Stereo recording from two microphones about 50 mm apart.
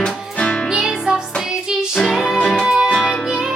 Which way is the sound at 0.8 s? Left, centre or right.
Centre.